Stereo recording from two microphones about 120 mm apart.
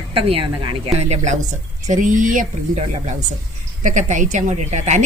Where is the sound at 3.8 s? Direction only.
90° right; by 5.0 s 75° right (ahead or behind).